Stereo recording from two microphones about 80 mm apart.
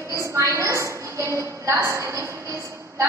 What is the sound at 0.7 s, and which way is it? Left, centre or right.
A woman's voice, right.